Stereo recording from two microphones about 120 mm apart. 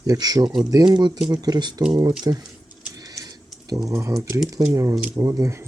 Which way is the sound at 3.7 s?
30° right (ahead or behind).